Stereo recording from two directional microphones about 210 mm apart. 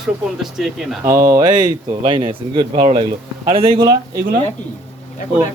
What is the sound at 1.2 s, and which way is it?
Speech, 20° right (ahead or behind).